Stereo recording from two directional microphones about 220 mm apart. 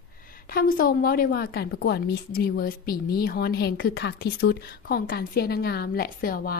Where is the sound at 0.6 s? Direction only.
40° left (ahead or behind).